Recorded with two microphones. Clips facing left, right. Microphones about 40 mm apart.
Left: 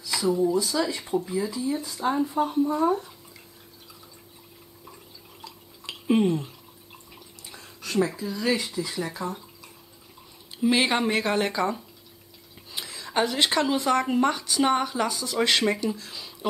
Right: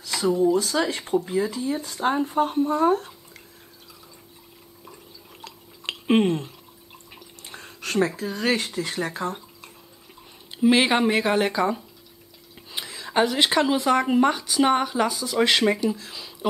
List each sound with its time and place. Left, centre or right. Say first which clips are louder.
0.5 s speech: right 3 dB; right
5.4 s drip: right 1 dB; right
7.4 s a sound: right 5 dB; right
8.2 s speech: right 2 dB; right
10.6 s speech: right 4 dB; centre
12.7 s a sound: right 3 dB; centre
13.7 s speech: right 3 dB; centre